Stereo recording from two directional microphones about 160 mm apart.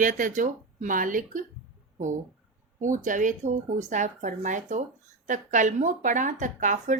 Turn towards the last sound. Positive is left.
turn(degrees=-50)  # may be behind; listen again after turning